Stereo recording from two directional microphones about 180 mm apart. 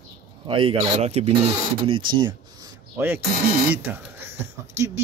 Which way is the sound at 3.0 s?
10° right (ahead or behind).